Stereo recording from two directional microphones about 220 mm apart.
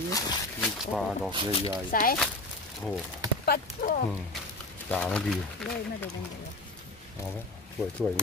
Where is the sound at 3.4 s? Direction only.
40° left (ahead or behind).